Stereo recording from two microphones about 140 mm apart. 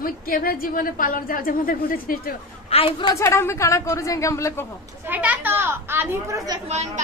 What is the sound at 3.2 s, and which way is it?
Speech, 20° left (ahead or behind).